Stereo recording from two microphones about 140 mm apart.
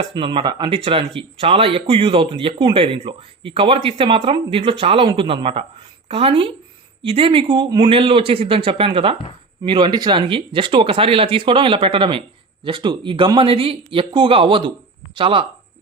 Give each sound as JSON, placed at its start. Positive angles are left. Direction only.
{"t": 0.1, "sound": "speech", "side_deg": -35}